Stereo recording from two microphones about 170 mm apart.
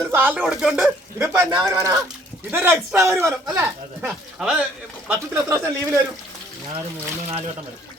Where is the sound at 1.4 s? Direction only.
20° right (ahead or behind).